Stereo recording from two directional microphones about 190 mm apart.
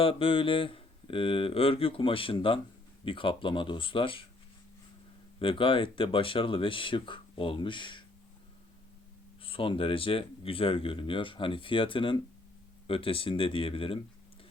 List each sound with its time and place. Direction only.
0.0 s speech: 30° left (ahead or behind)
5.4 s speech: 25° left (ahead or behind)
9.4 s speech: 30° left (ahead or behind)